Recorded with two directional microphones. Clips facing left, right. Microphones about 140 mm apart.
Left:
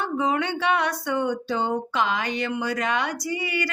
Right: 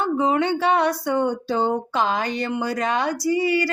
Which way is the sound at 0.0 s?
30° right (ahead or behind).